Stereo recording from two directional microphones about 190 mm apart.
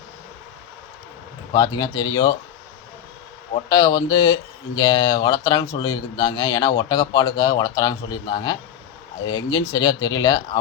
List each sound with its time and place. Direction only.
1.5 s speech: 20° left (ahead or behind)
3.7 s speech: 20° left (ahead or behind)